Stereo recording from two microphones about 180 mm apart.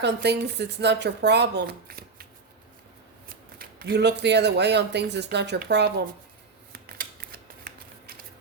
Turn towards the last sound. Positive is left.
turn(degrees=-60)  # may be behind; listen again after turning